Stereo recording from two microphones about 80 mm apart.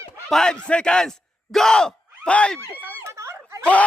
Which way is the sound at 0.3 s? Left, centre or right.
Centre.